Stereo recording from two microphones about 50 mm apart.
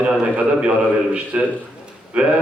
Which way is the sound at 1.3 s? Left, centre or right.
Right.